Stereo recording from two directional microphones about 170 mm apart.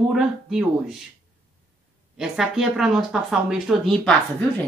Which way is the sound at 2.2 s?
Centre (ahead or behind).